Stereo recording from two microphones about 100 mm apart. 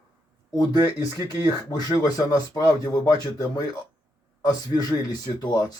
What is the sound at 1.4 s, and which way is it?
Speech, 40° left (ahead or behind).